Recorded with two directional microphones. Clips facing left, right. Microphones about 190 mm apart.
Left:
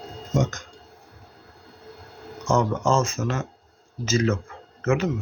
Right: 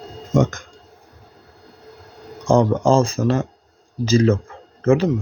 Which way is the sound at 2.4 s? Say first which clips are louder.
Right 6 dB; 30° right (ahead or behind).